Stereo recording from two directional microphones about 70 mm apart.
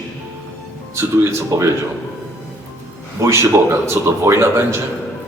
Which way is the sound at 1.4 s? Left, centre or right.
Right.